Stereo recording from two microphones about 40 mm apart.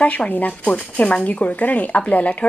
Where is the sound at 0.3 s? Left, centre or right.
Left.